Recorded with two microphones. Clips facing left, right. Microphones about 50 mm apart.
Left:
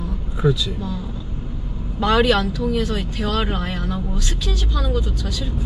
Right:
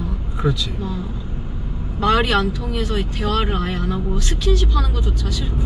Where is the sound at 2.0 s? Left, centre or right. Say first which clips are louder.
Even; centre.